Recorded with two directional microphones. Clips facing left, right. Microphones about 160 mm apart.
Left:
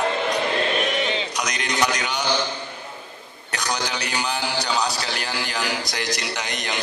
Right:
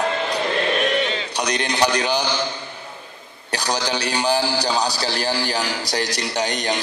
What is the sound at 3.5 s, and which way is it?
A man's voice, 30° right (ahead or behind).